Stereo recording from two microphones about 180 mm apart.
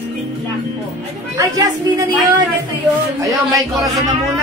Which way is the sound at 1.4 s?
20° right (ahead or behind).